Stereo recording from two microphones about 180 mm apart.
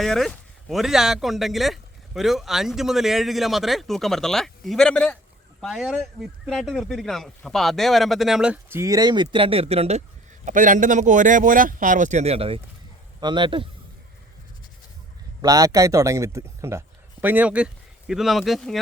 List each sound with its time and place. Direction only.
0.0 s speech: centre (ahead or behind)
8.8 s speech: 20° right (ahead or behind)
10.4 s a man's voice: 45° right (ahead or behind); by 13.7 s 25° right (ahead or behind)
15.4 s a man's voice: 20° right (ahead or behind); by 18.8 s centre (ahead or behind)